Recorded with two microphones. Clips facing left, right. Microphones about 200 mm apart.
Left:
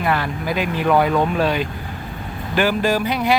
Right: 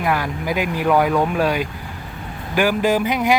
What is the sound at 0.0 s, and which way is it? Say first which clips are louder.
Speech: even; 10° right (ahead or behind).